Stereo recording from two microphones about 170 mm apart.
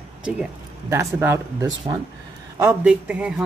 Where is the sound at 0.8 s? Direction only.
15° right (ahead or behind).